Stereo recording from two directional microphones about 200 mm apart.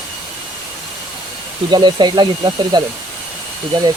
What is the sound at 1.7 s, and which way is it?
Speech, 25° right (ahead or behind).